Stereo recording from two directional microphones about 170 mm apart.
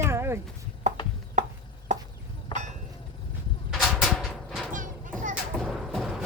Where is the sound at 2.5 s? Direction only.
30° left (ahead or behind).